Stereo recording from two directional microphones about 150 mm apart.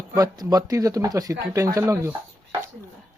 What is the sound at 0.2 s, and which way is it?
Speech, 25° right (ahead or behind).